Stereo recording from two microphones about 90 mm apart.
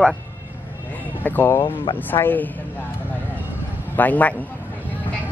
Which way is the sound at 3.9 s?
20° left (ahead or behind).